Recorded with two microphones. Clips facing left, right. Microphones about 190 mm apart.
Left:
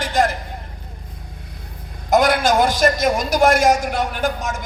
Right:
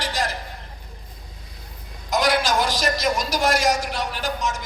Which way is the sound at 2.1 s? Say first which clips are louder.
Left 5 dB; 55° left (ahead or behind).